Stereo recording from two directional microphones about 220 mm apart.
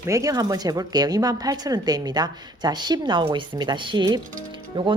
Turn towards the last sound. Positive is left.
turn(degrees=-20)  # may be behind; listen again after turning